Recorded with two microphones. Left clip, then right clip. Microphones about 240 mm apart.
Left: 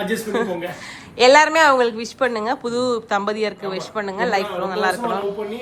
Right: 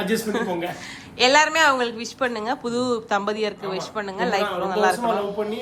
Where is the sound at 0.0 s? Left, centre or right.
Centre.